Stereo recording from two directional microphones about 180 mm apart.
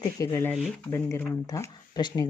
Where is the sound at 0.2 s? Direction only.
20° left (ahead or behind).